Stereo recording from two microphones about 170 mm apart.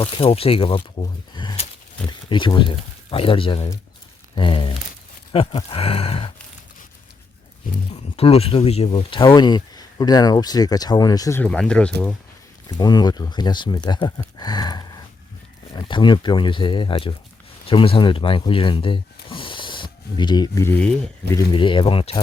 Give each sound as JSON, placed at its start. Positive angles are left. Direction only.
{"t": 0.0, "sound": "speech", "side_deg": 35}
{"t": 1.3, "sound": "a sound", "side_deg": 25}
{"t": 2.0, "sound": "speech", "side_deg": 30}
{"t": 4.4, "sound": "a sound", "side_deg": 30}
{"t": 5.3, "sound": "speech", "side_deg": 35}
{"t": 8.1, "sound": "speech", "side_deg": 35}
{"t": 11.4, "sound": "speech", "side_deg": 5}
{"t": 12.6, "sound": "speech", "side_deg": 25}